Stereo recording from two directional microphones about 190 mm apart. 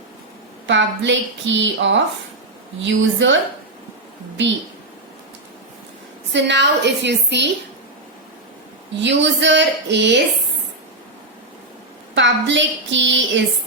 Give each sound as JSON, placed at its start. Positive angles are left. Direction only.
{"t": 0.7, "sound": "a woman's voice", "side_deg": -70}
{"t": 6.3, "sound": "a woman's voice", "side_deg": -70}
{"t": 9.0, "sound": "a woman's voice", "side_deg": -70}
{"t": 12.1, "sound": "a woman's voice", "side_deg": -70}